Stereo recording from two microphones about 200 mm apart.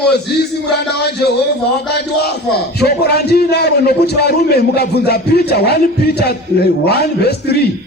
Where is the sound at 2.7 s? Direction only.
55° left (ahead or behind).